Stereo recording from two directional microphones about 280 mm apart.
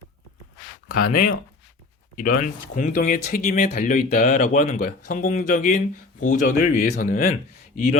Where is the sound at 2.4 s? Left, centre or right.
Left.